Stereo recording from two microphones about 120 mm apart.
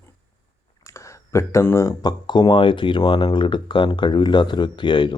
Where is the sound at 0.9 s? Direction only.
25° left (ahead or behind).